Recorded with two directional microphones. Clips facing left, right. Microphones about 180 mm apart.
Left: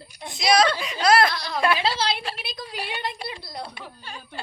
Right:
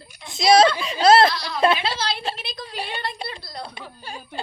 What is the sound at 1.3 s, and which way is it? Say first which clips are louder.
Speech: right 1 dB; 50° left (ahead or behind).